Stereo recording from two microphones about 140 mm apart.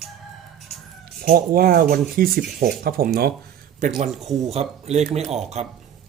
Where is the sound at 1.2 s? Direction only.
90° right.